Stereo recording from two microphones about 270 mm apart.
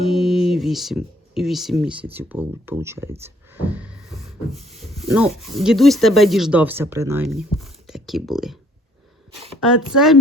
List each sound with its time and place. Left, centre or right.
0.0 s a sound: centre
1.4 s speech: centre
3.2 s a sound: centre
4.5 s speech: right
5.0 s speech: centre
9.6 s speech: centre